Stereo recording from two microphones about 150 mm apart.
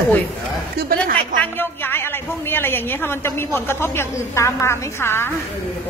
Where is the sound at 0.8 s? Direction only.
85° right.